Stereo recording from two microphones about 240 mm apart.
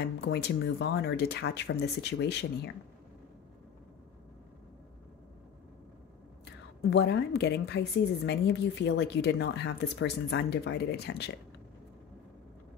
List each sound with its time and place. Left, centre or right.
0.0 s a woman's voice: left
6.8 s a woman's voice: left